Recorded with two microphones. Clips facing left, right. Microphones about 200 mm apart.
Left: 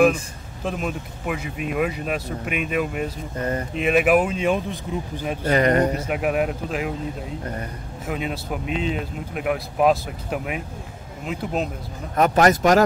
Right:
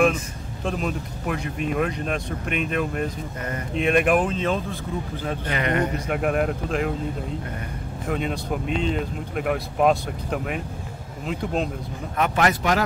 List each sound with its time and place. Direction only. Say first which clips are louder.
0.7 s speech: even; 5° left (ahead or behind)
5.4 s speech: left 7 dB; 40° left (ahead or behind)
5.9 s speech: left 1 dB; 5° left (ahead or behind)
8.1 s speech: right 1 dB; 5° left (ahead or behind)
12.2 s speech: left 5 dB; 40° left (ahead or behind)